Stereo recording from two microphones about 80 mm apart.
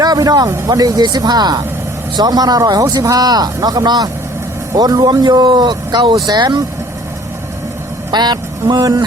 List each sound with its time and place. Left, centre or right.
0.0 s speech: right
8.1 s speech: right